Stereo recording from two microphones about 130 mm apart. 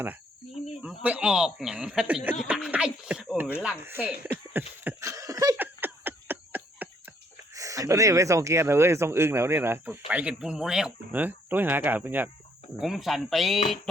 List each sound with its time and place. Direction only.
0.8 s speech: 10° right (ahead or behind)
4.8 s a sound: 20° right (ahead or behind)
7.5 s speech: 25° right (ahead or behind)
12.8 s speech: centre (ahead or behind)